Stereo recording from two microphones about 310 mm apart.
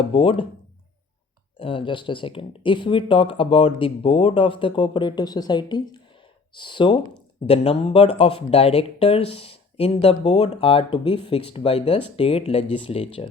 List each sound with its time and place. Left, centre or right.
0.0 s speech: centre
1.5 s speech: centre